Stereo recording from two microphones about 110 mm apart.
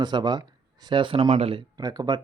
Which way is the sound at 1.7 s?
35° right (ahead or behind).